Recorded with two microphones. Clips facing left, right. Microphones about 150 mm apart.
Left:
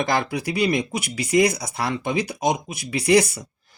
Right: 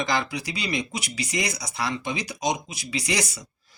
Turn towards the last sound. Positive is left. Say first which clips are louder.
# left 10 dB
turn(degrees=55)  # may be behind; listen again after turning